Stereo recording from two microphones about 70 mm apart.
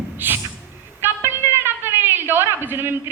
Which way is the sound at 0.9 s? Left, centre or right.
Right.